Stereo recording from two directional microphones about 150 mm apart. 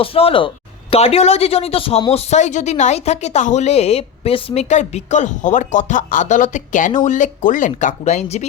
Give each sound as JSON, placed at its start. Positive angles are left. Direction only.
{"t": 0.0, "sound": "a woman's voice", "side_deg": 40}